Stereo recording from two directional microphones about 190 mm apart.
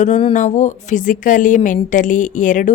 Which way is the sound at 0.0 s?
35° left (ahead or behind).